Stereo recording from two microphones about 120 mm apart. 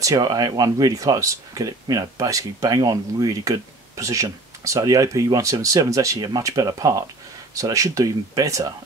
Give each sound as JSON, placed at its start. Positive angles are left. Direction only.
{"t": 0.0, "sound": "speech", "side_deg": -30}